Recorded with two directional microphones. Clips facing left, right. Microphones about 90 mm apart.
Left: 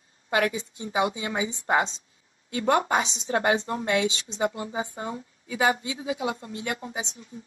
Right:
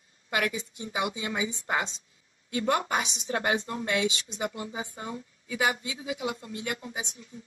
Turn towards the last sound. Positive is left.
turn(degrees=30)  # may be behind; listen again after turning